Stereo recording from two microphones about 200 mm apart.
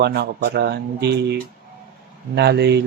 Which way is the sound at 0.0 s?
55° right (ahead or behind).